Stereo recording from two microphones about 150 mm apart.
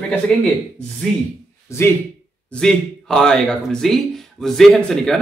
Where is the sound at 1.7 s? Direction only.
20° left (ahead or behind).